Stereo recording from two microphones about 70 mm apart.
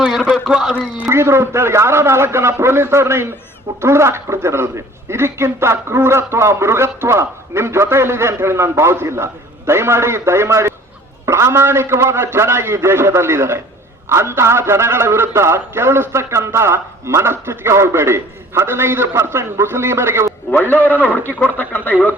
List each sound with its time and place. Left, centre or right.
0.0 s a sound: centre
0.5 s speech: centre
1.0 s a man's voice: right
20.5 s a man's voice: left